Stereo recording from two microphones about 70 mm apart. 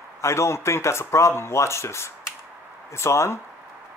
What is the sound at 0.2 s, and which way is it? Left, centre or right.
A man's voice, left.